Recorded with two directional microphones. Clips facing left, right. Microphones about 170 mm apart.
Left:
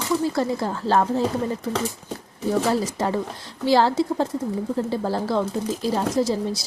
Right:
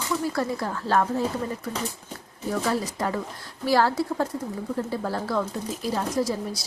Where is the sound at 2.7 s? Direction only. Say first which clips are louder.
Left 4 dB; 25° left (ahead or behind).